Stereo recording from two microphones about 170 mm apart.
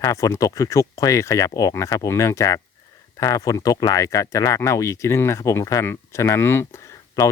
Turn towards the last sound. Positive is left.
turn(degrees=15)  # may be behind; listen again after turning